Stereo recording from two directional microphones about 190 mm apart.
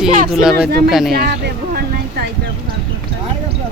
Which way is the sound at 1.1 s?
55° right (ahead or behind).